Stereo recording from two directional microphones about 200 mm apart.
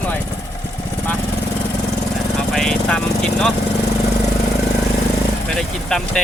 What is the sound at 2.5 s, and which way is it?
Speech, 5° left (ahead or behind).